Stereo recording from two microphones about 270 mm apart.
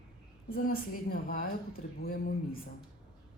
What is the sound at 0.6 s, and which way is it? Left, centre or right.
A woman's voice, left.